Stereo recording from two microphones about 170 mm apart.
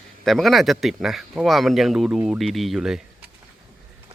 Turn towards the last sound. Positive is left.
turn(degrees=0)  # may be behind; listen again after turning